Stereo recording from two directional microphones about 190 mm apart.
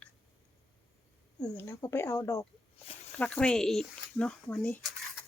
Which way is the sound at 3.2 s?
5° left (ahead or behind).